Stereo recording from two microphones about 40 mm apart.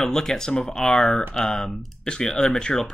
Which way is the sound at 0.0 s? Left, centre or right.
Centre.